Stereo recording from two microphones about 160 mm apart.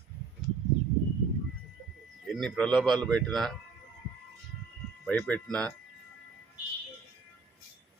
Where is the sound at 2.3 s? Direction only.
5° left (ahead or behind).